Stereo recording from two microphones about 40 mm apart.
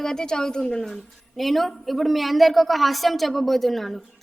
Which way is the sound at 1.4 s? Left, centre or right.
Centre.